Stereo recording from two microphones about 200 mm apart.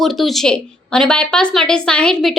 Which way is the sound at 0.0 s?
Centre (ahead or behind).